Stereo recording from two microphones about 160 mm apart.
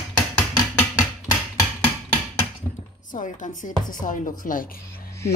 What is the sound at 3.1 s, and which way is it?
A woman's voice, 55° left (ahead or behind).